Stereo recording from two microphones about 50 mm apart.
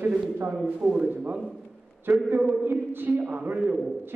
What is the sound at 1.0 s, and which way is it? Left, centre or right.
Speech, right.